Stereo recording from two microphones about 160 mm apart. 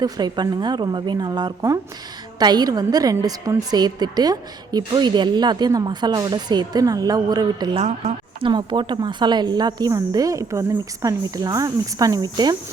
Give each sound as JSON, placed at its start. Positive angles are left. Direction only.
{"t": 0.0, "sound": "a woman's voice", "side_deg": -25}
{"t": 7.8, "sound": "speech", "side_deg": -45}
{"t": 8.4, "sound": "a woman's voice", "side_deg": -30}